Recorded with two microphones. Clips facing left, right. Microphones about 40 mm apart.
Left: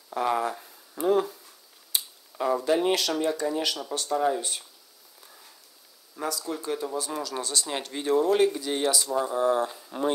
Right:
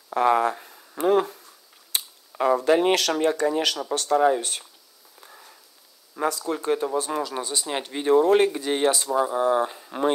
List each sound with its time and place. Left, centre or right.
0.1 s speech: right
6.1 s speech: right
7.3 s speech: centre; by 9.3 s right
9.3 s speech: centre
9.8 s speech: right